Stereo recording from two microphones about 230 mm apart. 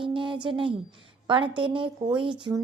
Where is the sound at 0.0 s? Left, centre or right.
Right.